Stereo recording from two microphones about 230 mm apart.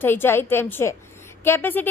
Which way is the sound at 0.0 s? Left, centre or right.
Centre.